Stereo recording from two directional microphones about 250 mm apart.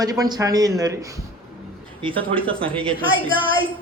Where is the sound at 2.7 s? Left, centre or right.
Centre.